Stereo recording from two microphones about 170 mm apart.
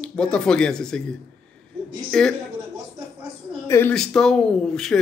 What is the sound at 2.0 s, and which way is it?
Speech, 5° left (ahead or behind).